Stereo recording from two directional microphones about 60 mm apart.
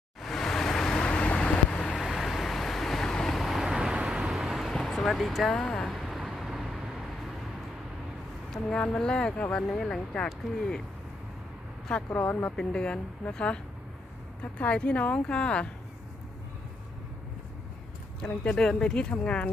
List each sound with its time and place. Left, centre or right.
0.2 s vehicle: centre
2.0 s vehicle: centre
4.3 s vehicle: centre
4.9 s speech: centre
5.5 s a sound: centre
8.8 s a woman's voice: centre
11.9 s a woman's voice: centre
14.6 s speech: centre
18.3 s a woman's voice: centre